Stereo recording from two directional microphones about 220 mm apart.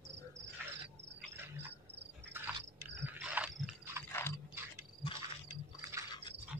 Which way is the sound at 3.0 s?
5° right (ahead or behind).